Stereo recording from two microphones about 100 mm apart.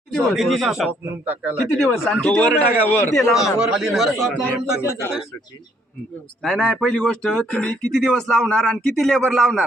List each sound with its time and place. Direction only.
0.1 s speech: centre (ahead or behind)
0.9 s speech: 15° right (ahead or behind)
1.8 s a man's voice: 10° left (ahead or behind)
3.3 s speech: 5° right (ahead or behind)
4.8 s speech: 25° left (ahead or behind)
6.4 s speech: centre (ahead or behind)